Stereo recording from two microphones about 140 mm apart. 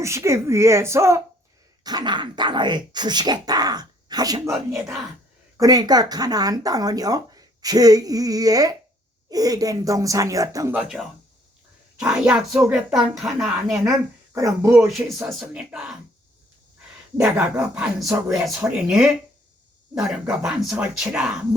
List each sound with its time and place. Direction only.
0.0 s speech: 20° right (ahead or behind)
10.8 s speech: 5° right (ahead or behind)
12.5 s speech: 25° right (ahead or behind)
12.7 s speech: 5° right (ahead or behind)
14.3 s speech: 20° right (ahead or behind)
14.9 s speech: 5° right (ahead or behind)
17.2 s speech: 10° right (ahead or behind)